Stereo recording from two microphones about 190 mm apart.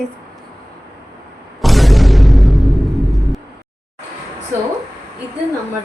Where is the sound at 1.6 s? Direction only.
Centre (ahead or behind).